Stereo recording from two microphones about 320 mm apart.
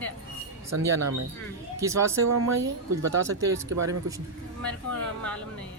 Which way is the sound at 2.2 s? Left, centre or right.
Right.